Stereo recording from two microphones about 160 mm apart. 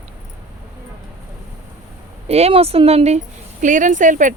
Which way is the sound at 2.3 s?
40° right (ahead or behind).